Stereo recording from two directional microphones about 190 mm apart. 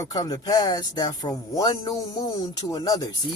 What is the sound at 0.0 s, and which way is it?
Speech, 20° left (ahead or behind).